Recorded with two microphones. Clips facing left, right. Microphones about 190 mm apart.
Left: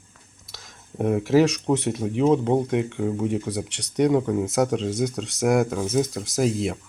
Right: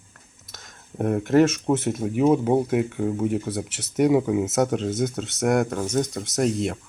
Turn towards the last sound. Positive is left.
turn(degrees=0)  # may be behind; listen again after turning